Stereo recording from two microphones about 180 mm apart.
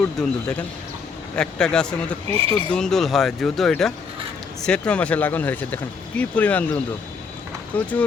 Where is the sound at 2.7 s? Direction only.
5° left (ahead or behind).